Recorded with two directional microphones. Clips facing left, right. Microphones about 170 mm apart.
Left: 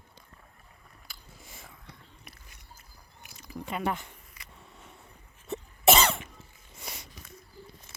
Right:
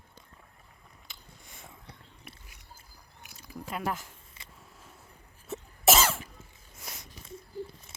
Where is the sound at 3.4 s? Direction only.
Centre (ahead or behind).